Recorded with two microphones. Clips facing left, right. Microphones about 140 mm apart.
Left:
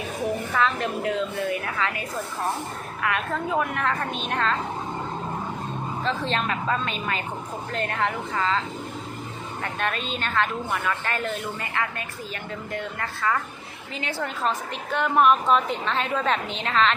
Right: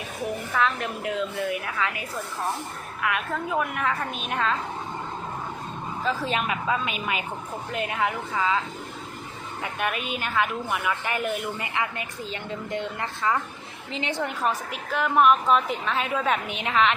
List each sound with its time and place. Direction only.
0.5 s a woman's voice: 5° right (ahead or behind)
3.6 s a woman's voice: 5° right (ahead or behind)
6.2 s a woman's voice: 10° right (ahead or behind)
9.7 s a woman's voice: 10° right (ahead or behind)
14.8 s a woman's voice: centre (ahead or behind)